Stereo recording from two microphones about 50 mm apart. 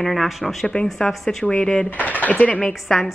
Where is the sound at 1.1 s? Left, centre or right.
Centre.